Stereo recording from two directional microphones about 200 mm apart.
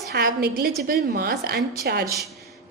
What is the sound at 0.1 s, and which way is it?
A woman's voice, 50° right (ahead or behind).